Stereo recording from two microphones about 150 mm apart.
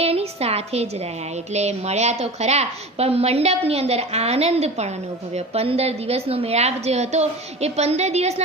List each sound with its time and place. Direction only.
0.0 s a woman's voice: 45° right (ahead or behind)